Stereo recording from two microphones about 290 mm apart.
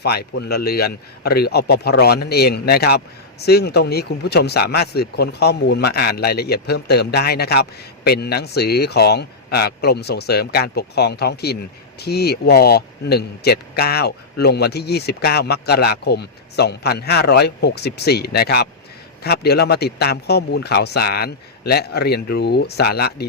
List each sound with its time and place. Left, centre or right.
0.0 s speech: left